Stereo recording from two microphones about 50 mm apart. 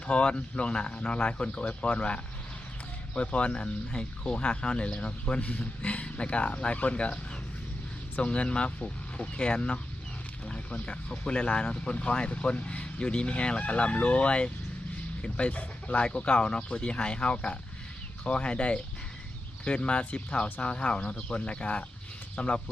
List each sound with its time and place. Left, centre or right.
0.1 s speech: left